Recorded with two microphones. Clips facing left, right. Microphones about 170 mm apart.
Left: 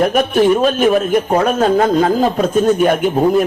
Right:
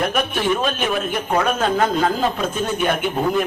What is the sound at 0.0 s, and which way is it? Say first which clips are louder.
A man's voice: left 9 dB; 40° left (ahead or behind).